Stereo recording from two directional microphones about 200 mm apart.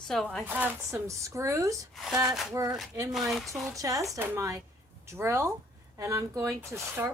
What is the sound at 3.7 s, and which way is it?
Speech, 15° right (ahead or behind).